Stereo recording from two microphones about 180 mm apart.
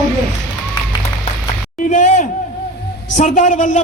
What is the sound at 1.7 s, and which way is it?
A man's voice, 45° left (ahead or behind).